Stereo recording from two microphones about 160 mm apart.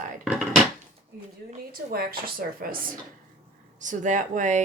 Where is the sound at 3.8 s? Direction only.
50° right (ahead or behind).